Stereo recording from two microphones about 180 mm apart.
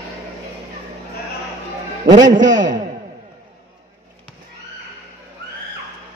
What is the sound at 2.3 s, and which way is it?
Speech, 45° right (ahead or behind).